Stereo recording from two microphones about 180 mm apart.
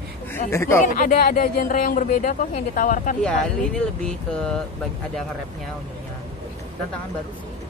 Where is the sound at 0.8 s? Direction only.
45° left (ahead or behind).